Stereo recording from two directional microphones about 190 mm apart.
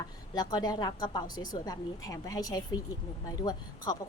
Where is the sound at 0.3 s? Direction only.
20° left (ahead or behind).